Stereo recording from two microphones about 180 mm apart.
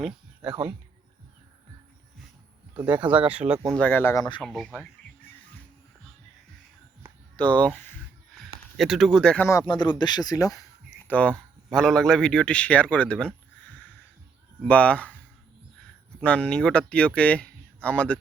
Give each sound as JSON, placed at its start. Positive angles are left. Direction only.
{"t": 2.8, "sound": "speech", "side_deg": -10}
{"t": 3.7, "sound": "speech", "side_deg": 5}
{"t": 4.4, "sound": "speech", "side_deg": 5}
{"t": 7.3, "sound": "speech", "side_deg": 10}
{"t": 8.8, "sound": "speech", "side_deg": 0}
{"t": 9.5, "sound": "speech", "side_deg": 20}
{"t": 11.1, "sound": "speech", "side_deg": 5}